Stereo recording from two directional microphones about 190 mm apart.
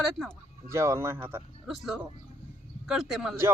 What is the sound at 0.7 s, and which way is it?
Speech, 15° right (ahead or behind).